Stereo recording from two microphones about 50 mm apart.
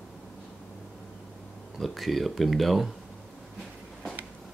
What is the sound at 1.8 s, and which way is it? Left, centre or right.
Speech, centre.